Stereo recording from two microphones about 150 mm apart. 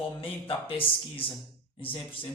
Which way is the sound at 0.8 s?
35° left (ahead or behind).